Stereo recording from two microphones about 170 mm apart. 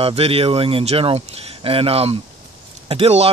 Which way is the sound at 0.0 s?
35° right (ahead or behind).